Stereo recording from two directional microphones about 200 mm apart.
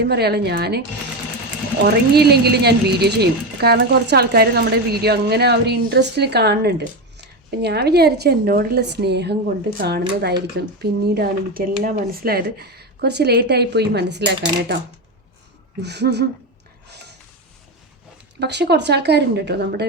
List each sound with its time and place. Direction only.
0.0 s speech: 55° right (ahead or behind)
1.8 s speech: 55° right (ahead or behind)
15.8 s speech: 55° right (ahead or behind)
18.3 s speech: 55° right (ahead or behind)